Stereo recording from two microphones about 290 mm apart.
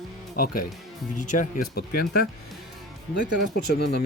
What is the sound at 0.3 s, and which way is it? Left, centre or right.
Speech, left.